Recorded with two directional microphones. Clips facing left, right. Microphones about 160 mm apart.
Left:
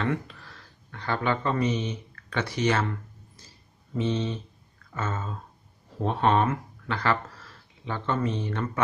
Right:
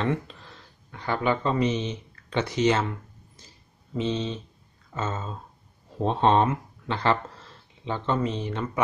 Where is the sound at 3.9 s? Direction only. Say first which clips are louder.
Even; 20° right (ahead or behind).